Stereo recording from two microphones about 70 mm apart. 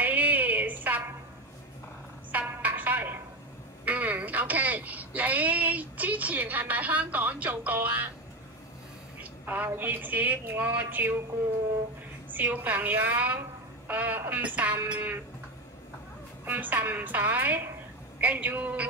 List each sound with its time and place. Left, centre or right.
0.0 s a sound: right
2.3 s music: right
3.8 s a sound: right
9.2 s a woman's voice: right
12.3 s a woman's voice: right
16.4 s a woman's voice: right